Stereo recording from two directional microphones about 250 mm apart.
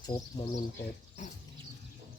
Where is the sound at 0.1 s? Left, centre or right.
Left.